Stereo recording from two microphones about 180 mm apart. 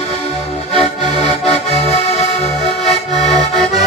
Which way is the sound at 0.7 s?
35° left (ahead or behind).